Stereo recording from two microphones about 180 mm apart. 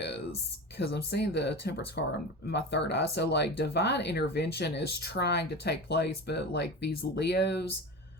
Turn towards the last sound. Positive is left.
turn(degrees=70)  # may be behind; listen again after turning